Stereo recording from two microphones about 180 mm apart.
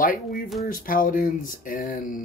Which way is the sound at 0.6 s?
50° left (ahead or behind).